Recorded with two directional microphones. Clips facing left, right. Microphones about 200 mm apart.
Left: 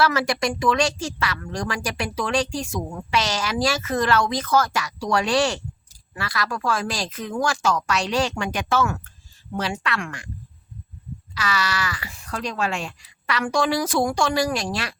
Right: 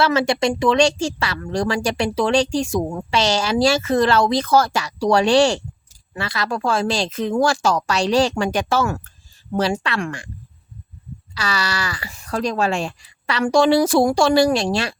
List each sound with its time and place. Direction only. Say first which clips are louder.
0.0 s speech: right 4 dB; 25° right (ahead or behind)
11.3 s speech: right 1 dB; 30° right (ahead or behind)